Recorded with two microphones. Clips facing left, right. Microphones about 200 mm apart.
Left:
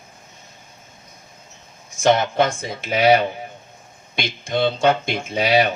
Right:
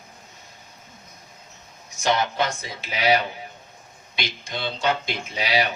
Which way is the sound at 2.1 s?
50° left (ahead or behind).